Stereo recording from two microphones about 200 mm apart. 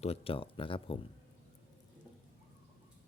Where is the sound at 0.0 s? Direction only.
30° left (ahead or behind).